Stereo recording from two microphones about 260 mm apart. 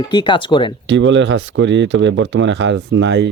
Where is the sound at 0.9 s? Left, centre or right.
Right.